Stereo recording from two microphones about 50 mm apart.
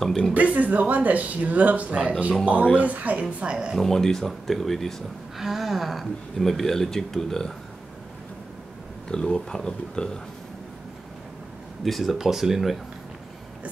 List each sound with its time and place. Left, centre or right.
0.0 s speech: centre
0.3 s speech: right
3.7 s speech: centre
9.1 s speech: centre
11.8 s speech: centre